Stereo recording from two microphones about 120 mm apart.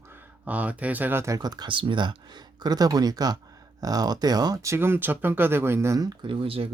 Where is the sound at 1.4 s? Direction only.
35° right (ahead or behind).